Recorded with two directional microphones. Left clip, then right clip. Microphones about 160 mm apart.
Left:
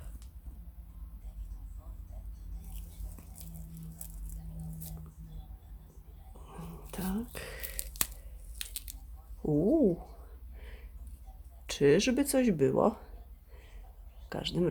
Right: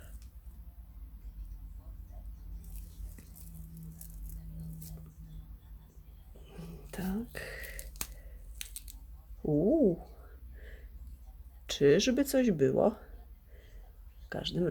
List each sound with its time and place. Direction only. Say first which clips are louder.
6.4 s whispering: left 2 dB; centre (ahead or behind)
8.5 s a sound: left 4 dB; 25° left (ahead or behind)
9.5 s speech: even; centre (ahead or behind)
10.6 s a sound: left 1 dB; 5° right (ahead or behind)
11.6 s speech: even; centre (ahead or behind)
14.3 s speech: left 1 dB; centre (ahead or behind)